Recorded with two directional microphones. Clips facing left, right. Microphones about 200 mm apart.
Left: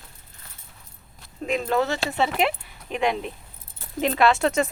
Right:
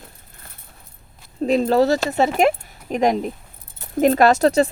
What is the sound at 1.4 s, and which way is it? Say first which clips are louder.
Speech: right 7 dB; 35° right (ahead or behind).